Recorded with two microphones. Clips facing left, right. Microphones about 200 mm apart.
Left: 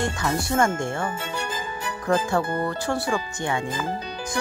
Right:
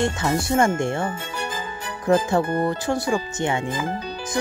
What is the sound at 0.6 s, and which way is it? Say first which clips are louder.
Speech: right 2 dB; 20° right (ahead or behind).